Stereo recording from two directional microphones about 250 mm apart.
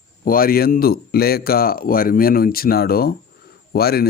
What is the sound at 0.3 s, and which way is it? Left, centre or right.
A man's voice, left.